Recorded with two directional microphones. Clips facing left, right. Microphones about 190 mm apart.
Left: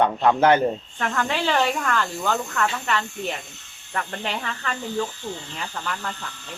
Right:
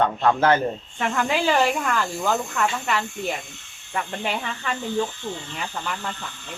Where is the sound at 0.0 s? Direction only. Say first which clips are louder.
Left 1 dB; 15° left (ahead or behind).